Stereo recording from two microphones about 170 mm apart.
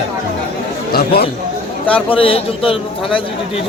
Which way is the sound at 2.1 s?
35° left (ahead or behind).